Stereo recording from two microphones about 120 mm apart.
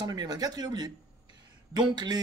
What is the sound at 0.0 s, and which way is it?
Speech, 35° right (ahead or behind).